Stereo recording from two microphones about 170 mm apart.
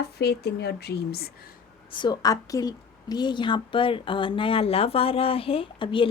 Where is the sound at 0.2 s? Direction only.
70° left (ahead or behind).